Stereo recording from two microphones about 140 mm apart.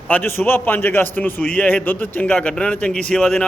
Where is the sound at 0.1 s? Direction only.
15° left (ahead or behind).